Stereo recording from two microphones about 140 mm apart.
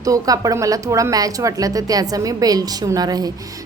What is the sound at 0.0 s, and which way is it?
A woman's voice, 25° right (ahead or behind).